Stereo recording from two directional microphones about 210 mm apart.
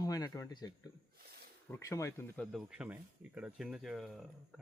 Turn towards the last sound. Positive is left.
turn(degrees=0)  # may be behind; listen again after turning